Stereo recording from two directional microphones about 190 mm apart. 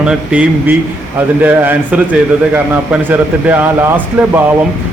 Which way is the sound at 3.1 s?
10° right (ahead or behind).